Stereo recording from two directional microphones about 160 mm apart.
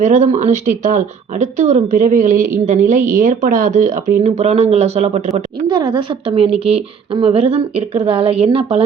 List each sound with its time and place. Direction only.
0.0 s speech: 50° right (ahead or behind)
5.6 s a woman's voice: 30° right (ahead or behind)